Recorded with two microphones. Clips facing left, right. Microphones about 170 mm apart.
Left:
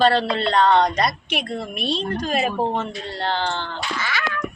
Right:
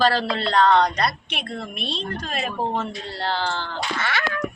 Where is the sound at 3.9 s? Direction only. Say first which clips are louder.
Right 2 dB; 55° right (ahead or behind).